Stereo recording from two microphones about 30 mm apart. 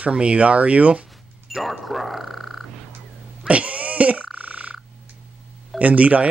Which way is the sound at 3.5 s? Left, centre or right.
Right.